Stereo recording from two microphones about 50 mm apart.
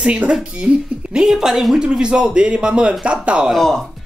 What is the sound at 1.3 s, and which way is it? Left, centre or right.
Speech, centre.